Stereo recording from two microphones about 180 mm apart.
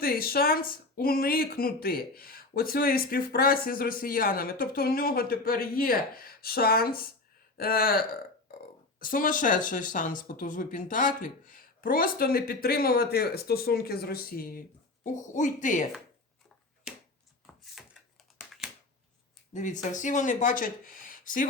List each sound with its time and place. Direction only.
0.0 s speech: 55° left (ahead or behind)
15.0 s speech: 45° left (ahead or behind)
17.4 s a sound: centre (ahead or behind)
19.5 s speech: 45° left (ahead or behind)